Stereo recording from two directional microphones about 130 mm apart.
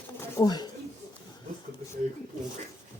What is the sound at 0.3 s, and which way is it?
Speech, 35° left (ahead or behind).